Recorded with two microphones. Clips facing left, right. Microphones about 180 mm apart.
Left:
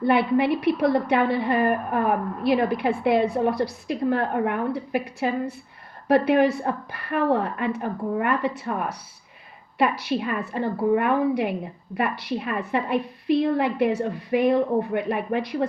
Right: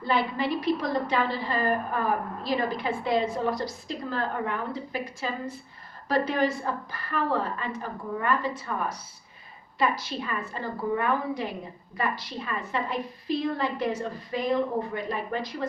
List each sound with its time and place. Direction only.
0.0 s a woman's voice: 60° left (ahead or behind)